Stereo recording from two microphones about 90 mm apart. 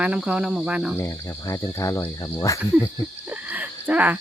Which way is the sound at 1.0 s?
35° left (ahead or behind).